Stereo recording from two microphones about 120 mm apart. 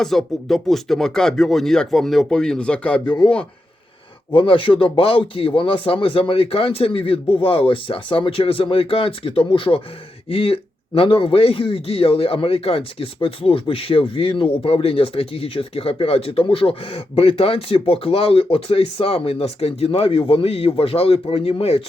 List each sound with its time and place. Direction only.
0.0 s speech: 5° left (ahead or behind)
4.3 s speech: 45° left (ahead or behind)